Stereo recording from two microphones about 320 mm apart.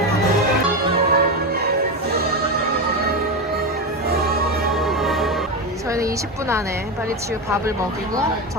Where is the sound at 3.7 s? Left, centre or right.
Right.